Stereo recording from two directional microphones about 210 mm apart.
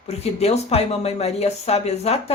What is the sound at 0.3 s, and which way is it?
Speech, 30° left (ahead or behind).